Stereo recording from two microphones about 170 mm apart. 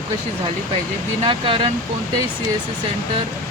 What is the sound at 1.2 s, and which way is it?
Speech, 30° right (ahead or behind).